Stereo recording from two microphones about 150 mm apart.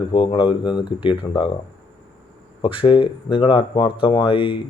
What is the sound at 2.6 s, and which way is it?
Speech, 35° left (ahead or behind).